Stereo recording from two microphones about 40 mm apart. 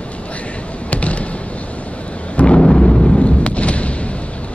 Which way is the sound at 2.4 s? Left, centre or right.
Left.